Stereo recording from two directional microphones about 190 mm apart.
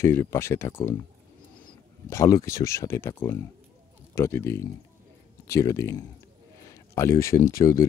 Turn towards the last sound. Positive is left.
turn(degrees=15)  # may be behind; listen again after turning